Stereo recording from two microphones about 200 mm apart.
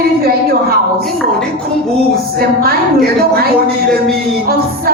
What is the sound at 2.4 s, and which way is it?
A woman's voice, 50° right (ahead or behind).